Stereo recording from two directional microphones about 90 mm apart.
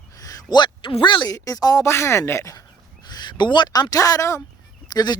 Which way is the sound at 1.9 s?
30° left (ahead or behind).